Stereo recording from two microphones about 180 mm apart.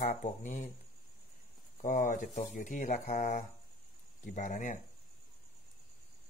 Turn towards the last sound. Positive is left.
turn(degrees=45)  # may be behind; listen again after turning